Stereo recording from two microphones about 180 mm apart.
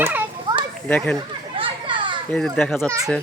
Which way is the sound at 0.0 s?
10° right (ahead or behind).